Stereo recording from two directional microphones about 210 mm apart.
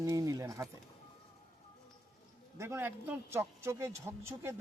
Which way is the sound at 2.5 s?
10° right (ahead or behind).